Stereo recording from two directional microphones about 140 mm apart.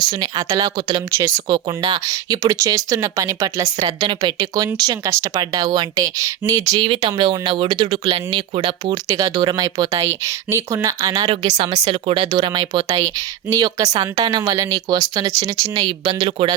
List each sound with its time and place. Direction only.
0.1 s speech: 30° right (ahead or behind)
1.1 s speech: 20° right (ahead or behind); by 8.9 s 40° right (ahead or behind)
8.9 s speech: 25° right (ahead or behind)